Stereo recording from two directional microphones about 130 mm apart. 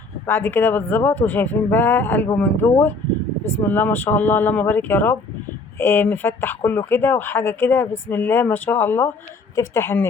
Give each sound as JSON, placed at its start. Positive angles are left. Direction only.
{"t": 0.3, "sound": "a woman's voice", "side_deg": 15}